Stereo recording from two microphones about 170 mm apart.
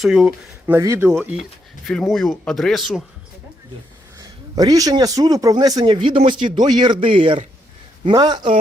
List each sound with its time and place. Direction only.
0.0 s speech: centre (ahead or behind)
0.7 s speech: 15° right (ahead or behind); by 3.0 s centre (ahead or behind)
4.2 s a man's voice: 20° right (ahead or behind)